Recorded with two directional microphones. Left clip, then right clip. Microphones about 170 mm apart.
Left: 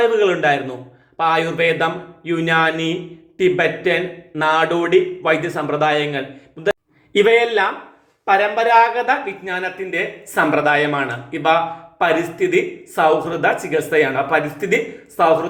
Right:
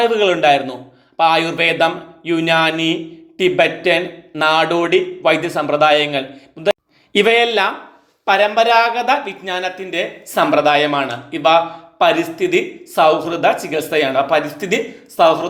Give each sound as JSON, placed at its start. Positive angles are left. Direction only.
{"t": 0.0, "sound": "a man's voice", "side_deg": -25}